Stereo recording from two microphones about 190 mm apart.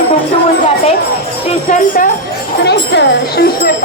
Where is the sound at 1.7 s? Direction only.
40° left (ahead or behind).